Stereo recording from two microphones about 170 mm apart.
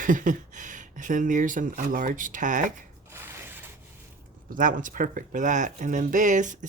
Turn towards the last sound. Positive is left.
turn(degrees=-45)  # may be behind; listen again after turning